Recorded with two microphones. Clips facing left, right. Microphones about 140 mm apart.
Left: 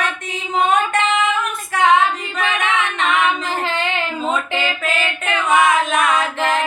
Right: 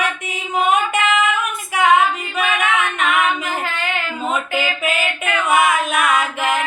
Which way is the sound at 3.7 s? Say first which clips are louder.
Left 2 dB; 25° left (ahead or behind).